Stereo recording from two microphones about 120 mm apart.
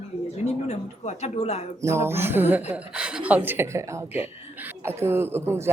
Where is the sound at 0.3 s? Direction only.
65° left (ahead or behind).